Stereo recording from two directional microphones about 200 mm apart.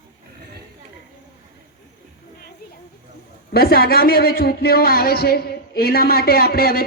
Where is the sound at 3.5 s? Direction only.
50° left (ahead or behind).